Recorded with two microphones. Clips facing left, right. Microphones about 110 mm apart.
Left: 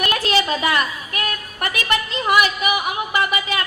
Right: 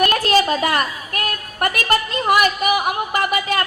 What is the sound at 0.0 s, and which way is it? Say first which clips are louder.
A woman's voice: right 4 dB; 45° right (ahead or behind).